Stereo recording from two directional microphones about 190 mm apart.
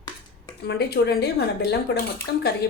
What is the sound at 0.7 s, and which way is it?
Speech, 60° left (ahead or behind).